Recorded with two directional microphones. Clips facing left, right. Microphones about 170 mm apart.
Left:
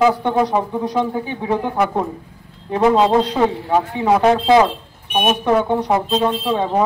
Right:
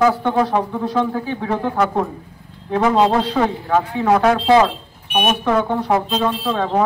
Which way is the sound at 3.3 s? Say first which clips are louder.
Left 1 dB; 15° left (ahead or behind).